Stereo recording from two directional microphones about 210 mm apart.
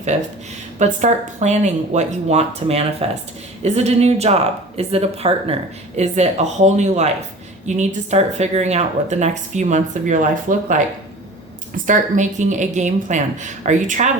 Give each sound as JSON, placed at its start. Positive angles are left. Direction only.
{"t": 0.8, "sound": "speech", "side_deg": -35}
{"t": 11.9, "sound": "speech", "side_deg": -35}